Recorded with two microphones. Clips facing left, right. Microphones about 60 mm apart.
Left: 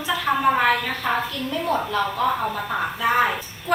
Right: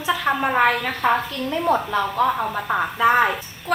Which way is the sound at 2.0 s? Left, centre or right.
Centre.